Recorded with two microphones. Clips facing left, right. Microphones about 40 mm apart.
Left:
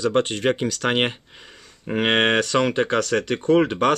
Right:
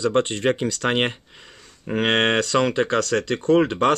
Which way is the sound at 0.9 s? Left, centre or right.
Centre.